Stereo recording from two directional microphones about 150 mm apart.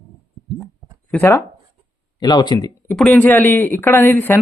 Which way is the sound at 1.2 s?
20° left (ahead or behind).